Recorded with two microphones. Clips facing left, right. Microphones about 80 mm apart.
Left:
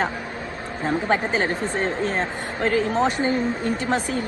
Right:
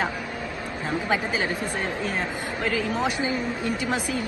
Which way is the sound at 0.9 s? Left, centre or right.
Left.